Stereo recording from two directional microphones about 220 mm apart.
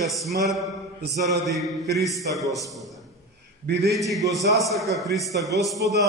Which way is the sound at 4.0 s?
Centre (ahead or behind).